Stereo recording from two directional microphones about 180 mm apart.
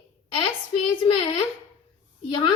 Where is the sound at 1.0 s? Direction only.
30° left (ahead or behind).